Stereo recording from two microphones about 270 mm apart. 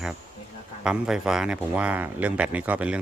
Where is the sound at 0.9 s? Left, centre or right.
Centre.